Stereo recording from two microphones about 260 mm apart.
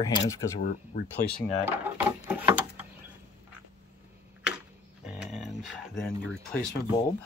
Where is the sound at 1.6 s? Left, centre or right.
Centre.